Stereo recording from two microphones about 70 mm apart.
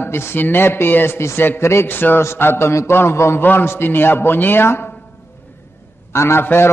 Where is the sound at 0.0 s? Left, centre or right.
Left.